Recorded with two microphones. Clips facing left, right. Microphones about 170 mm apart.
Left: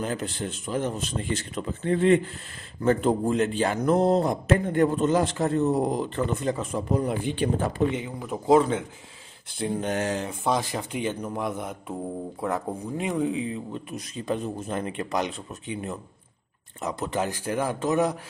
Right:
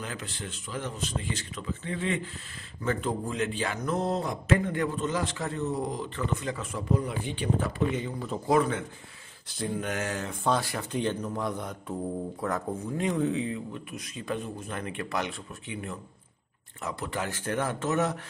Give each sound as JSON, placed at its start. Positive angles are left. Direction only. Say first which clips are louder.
{"t": 0.0, "sound": "a man's voice", "louder": "left 8 dB", "side_deg": 45}
{"t": 7.9, "sound": "speech", "louder": "left 1 dB", "side_deg": 10}
{"t": 8.5, "sound": "speech", "louder": "left 5 dB", "side_deg": 25}
{"t": 10.4, "sound": "speech", "louder": "even", "side_deg": 15}
{"t": 11.2, "sound": "speech", "louder": "left 2 dB", "side_deg": 20}
{"t": 13.5, "sound": "speech", "louder": "left 2 dB", "side_deg": 25}